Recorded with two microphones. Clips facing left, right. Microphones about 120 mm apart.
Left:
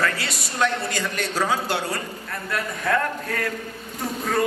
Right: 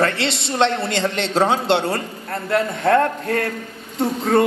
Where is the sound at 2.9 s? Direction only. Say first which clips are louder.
Right 7 dB; 40° right (ahead or behind).